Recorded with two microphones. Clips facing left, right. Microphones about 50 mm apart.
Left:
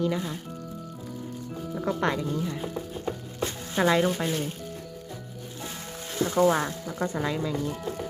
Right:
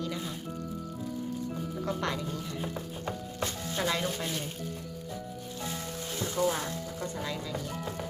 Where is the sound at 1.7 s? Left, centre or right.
Left.